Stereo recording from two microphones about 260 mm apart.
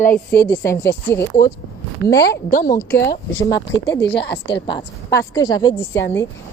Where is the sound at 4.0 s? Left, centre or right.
Left.